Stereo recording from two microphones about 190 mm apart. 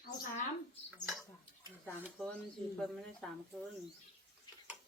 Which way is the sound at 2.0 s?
10° right (ahead or behind).